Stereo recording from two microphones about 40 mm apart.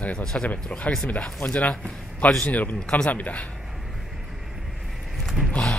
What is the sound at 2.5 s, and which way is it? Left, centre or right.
Speech, left.